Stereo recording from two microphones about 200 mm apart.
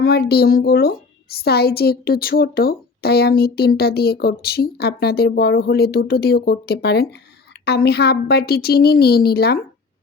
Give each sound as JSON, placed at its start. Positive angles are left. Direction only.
{"t": 0.0, "sound": "a woman's voice", "side_deg": 50}